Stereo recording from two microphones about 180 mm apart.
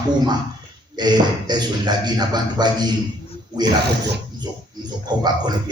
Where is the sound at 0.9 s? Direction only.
25° right (ahead or behind).